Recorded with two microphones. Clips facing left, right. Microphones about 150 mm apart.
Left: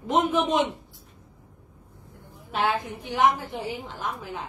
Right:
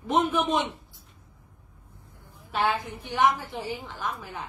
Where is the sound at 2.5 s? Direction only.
20° left (ahead or behind).